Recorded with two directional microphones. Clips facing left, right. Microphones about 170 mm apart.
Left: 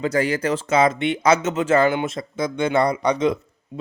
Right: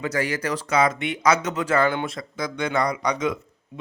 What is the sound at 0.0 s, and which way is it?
A man's voice, 30° left (ahead or behind).